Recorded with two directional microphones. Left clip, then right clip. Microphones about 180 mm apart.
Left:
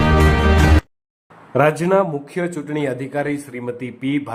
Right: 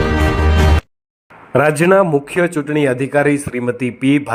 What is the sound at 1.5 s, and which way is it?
Speech, 30° right (ahead or behind).